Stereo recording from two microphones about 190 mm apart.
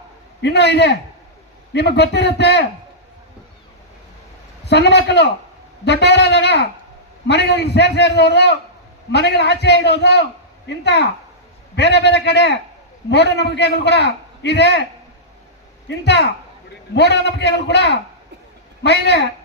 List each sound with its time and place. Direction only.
0.4 s a man's voice: 65° left (ahead or behind)
4.6 s a man's voice: 60° left (ahead or behind)
15.9 s a man's voice: 65° left (ahead or behind)